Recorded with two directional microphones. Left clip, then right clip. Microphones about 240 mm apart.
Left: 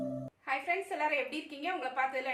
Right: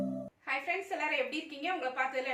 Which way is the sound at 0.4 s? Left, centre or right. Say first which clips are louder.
Left 1 dB; centre.